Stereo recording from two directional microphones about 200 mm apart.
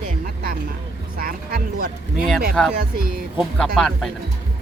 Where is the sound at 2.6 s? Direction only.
5° left (ahead or behind).